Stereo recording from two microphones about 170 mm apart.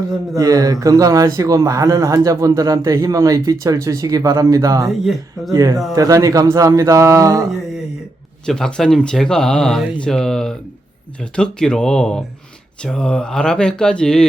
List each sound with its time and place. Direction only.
0.3 s speech: 20° right (ahead or behind)
8.4 s speech: 5° left (ahead or behind)